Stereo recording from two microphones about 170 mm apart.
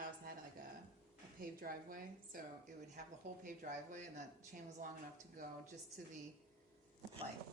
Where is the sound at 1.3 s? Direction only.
55° right (ahead or behind).